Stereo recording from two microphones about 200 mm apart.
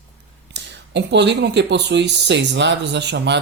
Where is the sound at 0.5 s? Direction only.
60° right (ahead or behind).